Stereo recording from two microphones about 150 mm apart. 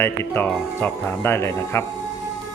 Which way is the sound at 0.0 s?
15° left (ahead or behind).